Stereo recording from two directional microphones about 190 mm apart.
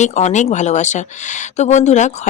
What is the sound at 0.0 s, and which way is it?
Speech, 35° left (ahead or behind).